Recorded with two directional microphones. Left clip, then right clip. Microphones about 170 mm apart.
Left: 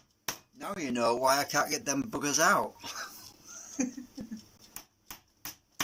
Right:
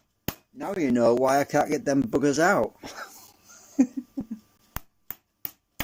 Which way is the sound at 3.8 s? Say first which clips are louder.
Right 10 dB; 50° right (ahead or behind).